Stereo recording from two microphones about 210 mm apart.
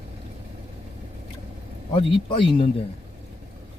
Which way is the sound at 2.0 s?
25° left (ahead or behind).